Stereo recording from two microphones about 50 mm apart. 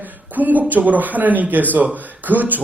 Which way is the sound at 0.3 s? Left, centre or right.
Right.